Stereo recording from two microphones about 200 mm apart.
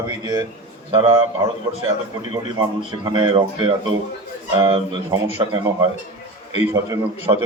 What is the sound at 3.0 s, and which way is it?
A man's voice, 25° right (ahead or behind).